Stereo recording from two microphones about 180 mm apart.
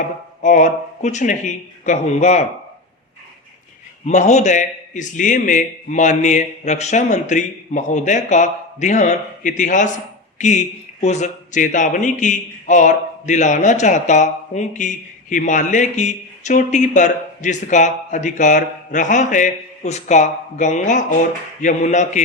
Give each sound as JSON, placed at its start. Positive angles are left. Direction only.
{"t": 0.4, "sound": "speech", "side_deg": 45}
{"t": 4.0, "sound": "speech", "side_deg": 40}